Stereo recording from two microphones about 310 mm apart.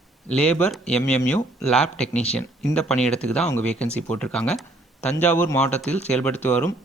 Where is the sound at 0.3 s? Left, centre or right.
Centre.